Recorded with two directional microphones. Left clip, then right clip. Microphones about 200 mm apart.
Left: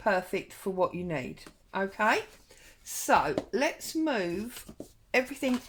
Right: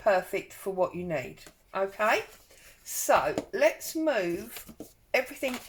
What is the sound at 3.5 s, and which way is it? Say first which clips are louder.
A woman's voice: right 4 dB; 45° left (ahead or behind).